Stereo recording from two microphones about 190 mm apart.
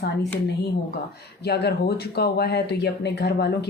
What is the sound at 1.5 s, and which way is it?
Speech, 60° left (ahead or behind).